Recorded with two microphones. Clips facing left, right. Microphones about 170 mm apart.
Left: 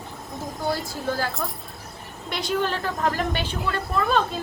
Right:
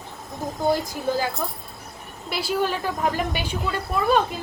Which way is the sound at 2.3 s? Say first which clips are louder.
Right 1 dB; 5° right (ahead or behind).